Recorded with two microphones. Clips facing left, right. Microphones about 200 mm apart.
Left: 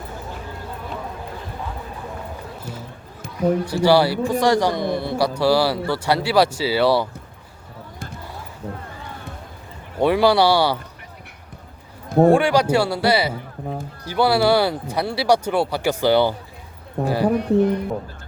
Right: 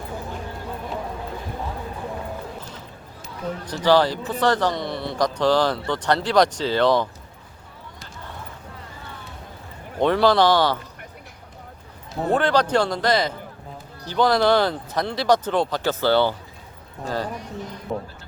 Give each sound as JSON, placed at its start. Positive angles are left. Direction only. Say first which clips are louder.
{"t": 2.6, "sound": "music", "louder": "left 4 dB", "side_deg": 10}
{"t": 3.6, "sound": "a man's voice", "louder": "even", "side_deg": 10}
{"t": 10.0, "sound": "a man's voice", "louder": "left 1 dB", "side_deg": 10}
{"t": 12.0, "sound": "a sound", "louder": "left 13 dB", "side_deg": 55}
{"t": 12.3, "sound": "a man's voice", "louder": "left 3 dB", "side_deg": 10}
{"t": 17.2, "sound": "speech", "louder": "left 15 dB", "side_deg": 60}